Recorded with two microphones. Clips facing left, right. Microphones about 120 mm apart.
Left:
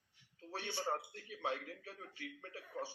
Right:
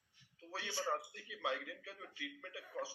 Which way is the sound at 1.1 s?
40° left (ahead or behind).